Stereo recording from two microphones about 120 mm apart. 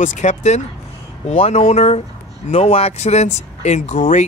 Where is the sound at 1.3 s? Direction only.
60° left (ahead or behind).